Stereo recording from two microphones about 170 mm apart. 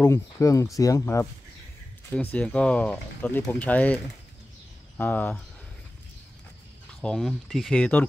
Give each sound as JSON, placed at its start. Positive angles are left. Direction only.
{"t": 0.0, "sound": "speech", "side_deg": 15}
{"t": 2.3, "sound": "speech", "side_deg": 5}
{"t": 7.0, "sound": "speech", "side_deg": 0}